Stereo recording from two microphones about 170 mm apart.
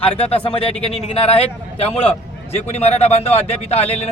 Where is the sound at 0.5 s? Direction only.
35° left (ahead or behind).